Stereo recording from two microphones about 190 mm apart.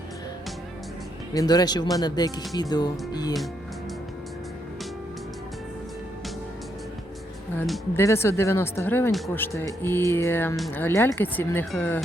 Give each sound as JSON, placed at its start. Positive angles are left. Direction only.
{"t": 1.3, "sound": "speech", "side_deg": 20}
{"t": 7.5, "sound": "speech", "side_deg": 10}